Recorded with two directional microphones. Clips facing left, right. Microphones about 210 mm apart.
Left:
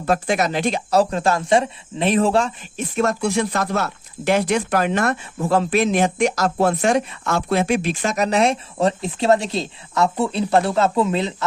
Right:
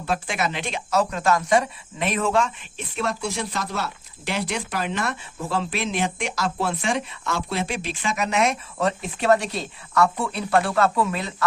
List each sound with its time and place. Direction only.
0.0 s speech: 45° left (ahead or behind); by 11.4 s 25° left (ahead or behind)